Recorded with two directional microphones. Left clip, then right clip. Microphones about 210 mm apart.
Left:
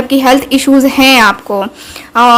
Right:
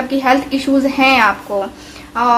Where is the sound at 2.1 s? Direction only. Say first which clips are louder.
Left 7 dB; 45° left (ahead or behind).